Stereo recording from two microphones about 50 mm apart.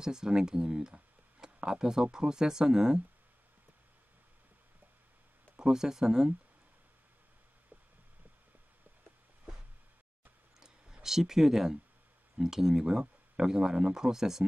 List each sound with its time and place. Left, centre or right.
0.0 s speech: centre
5.6 s speech: centre
10.6 s clicking: centre
12.4 s speech: centre